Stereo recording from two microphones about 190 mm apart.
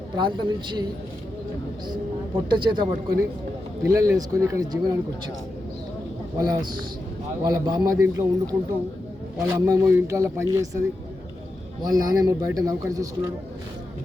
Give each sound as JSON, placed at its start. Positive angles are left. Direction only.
{"t": 0.2, "sound": "a man's voice", "side_deg": -25}
{"t": 2.5, "sound": "a man's voice", "side_deg": -25}
{"t": 6.3, "sound": "a man's voice", "side_deg": -20}
{"t": 9.6, "sound": "a man's voice", "side_deg": -15}